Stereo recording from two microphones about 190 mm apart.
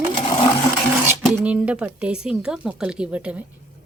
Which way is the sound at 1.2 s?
Centre (ahead or behind).